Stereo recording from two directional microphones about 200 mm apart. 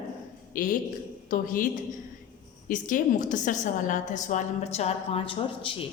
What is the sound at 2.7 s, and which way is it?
A woman's voice, 40° left (ahead or behind).